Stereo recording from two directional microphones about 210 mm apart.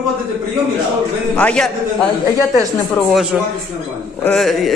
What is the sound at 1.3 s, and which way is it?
Speech, 5° left (ahead or behind).